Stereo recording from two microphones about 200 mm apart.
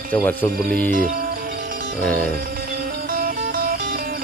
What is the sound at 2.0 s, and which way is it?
Music, 45° right (ahead or behind).